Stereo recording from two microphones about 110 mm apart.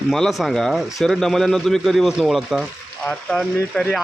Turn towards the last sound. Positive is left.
turn(degrees=5)  # may be behind; listen again after turning